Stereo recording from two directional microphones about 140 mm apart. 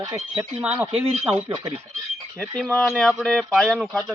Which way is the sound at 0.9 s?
5° right (ahead or behind).